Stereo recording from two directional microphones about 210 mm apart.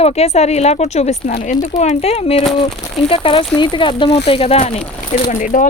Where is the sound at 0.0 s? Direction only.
30° left (ahead or behind).